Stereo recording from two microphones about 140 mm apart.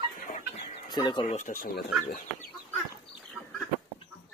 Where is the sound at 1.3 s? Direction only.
60° left (ahead or behind).